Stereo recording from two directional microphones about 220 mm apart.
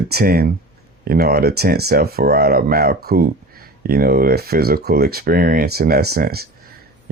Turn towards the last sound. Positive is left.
turn(degrees=-45)  # may be behind; listen again after turning